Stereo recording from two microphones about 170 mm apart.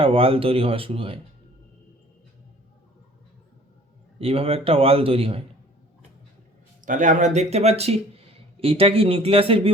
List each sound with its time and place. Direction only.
0.0 s speech: 35° right (ahead or behind)
4.2 s speech: 35° right (ahead or behind)
6.8 s speech: 50° right (ahead or behind); by 9.7 s 35° right (ahead or behind)